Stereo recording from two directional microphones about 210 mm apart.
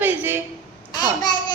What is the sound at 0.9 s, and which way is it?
Speech, 20° left (ahead or behind).